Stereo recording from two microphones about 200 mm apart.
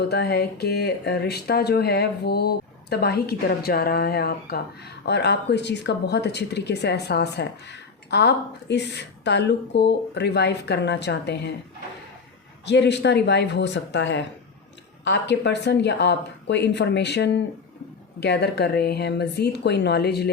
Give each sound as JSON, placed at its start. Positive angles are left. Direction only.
{"t": 0.1, "sound": "speech", "side_deg": 55}
{"t": 12.6, "sound": "speech", "side_deg": 60}